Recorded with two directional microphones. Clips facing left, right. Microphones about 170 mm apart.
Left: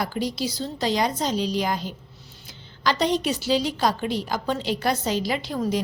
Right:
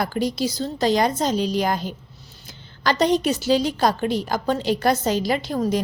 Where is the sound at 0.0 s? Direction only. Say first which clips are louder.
Right 4 dB; 50° right (ahead or behind).